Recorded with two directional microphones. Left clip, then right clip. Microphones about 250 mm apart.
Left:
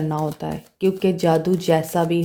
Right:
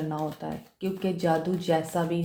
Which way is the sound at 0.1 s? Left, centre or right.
Left.